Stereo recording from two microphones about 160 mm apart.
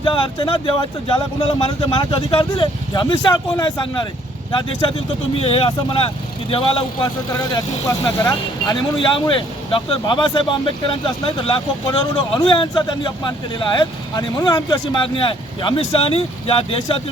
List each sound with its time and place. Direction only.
0.0 s speech: 30° left (ahead or behind)
7.5 s speech: 20° left (ahead or behind)